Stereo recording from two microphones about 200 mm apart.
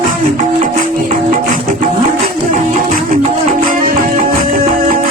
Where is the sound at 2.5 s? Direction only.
40° right (ahead or behind).